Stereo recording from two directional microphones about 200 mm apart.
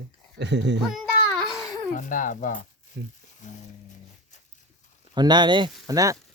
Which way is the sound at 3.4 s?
35° left (ahead or behind).